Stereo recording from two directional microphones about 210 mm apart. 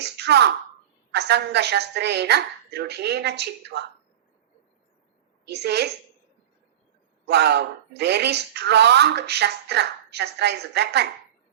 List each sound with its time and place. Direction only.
0.2 s speech: 55° right (ahead or behind)
5.5 s speech: 50° right (ahead or behind)
7.3 s speech: 55° right (ahead or behind)